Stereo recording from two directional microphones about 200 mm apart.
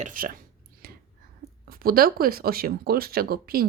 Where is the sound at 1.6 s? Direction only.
50° right (ahead or behind).